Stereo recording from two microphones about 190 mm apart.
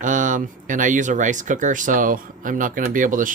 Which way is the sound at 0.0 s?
40° right (ahead or behind).